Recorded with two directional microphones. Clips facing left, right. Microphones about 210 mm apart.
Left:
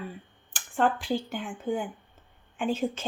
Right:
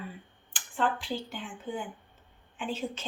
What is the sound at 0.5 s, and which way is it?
A woman's voice, 45° left (ahead or behind).